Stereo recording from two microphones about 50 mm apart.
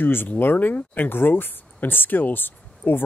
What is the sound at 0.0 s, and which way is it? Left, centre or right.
Speech, left.